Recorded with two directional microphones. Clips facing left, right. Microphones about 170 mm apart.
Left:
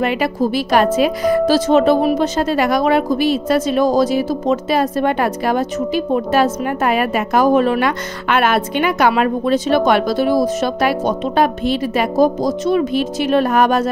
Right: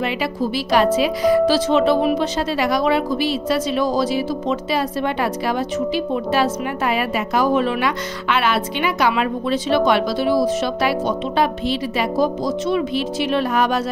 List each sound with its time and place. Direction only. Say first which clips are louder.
0.0 s a woman's voice: left 5 dB; 50° left (ahead or behind)